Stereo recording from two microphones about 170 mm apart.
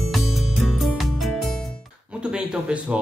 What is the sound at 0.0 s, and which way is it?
Music, centre (ahead or behind).